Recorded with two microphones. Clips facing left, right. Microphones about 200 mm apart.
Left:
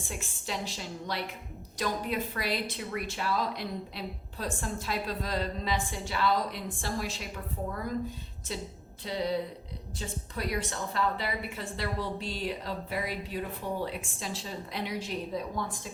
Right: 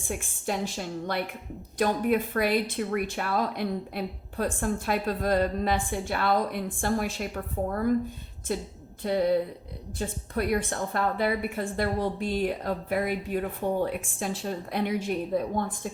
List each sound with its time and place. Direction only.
0.1 s speech: 50° right (ahead or behind)